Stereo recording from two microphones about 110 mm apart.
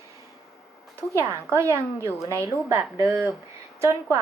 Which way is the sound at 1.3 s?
25° right (ahead or behind).